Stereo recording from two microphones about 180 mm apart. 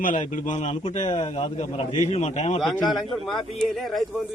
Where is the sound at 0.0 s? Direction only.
45° left (ahead or behind).